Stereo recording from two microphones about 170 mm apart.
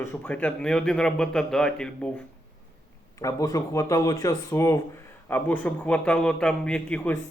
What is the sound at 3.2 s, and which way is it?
A man's voice, 20° left (ahead or behind).